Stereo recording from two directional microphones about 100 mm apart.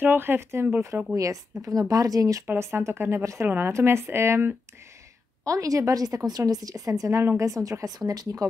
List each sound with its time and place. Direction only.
0.0 s a woman's voice: 20° right (ahead or behind); by 2.4 s 35° right (ahead or behind)
2.4 s speech: 25° right (ahead or behind)
5.4 s a woman's voice: 35° right (ahead or behind)